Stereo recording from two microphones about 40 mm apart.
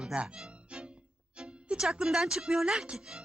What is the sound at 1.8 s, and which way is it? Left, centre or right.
Speech, centre.